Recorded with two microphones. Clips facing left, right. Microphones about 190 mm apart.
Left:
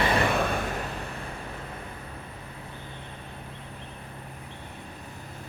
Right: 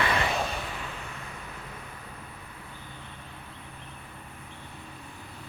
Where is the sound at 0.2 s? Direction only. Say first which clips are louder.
Left 4 dB; 55° left (ahead or behind).